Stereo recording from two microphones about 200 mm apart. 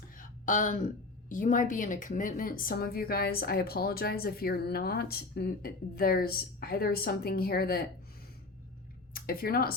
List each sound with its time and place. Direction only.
0.2 s a sound: 40° left (ahead or behind)
1.3 s a woman's voice: 40° left (ahead or behind)
9.1 s speech: 45° left (ahead or behind)